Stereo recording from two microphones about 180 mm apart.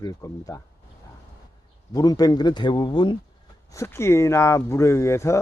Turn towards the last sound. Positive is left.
turn(degrees=15)  # may be behind; listen again after turning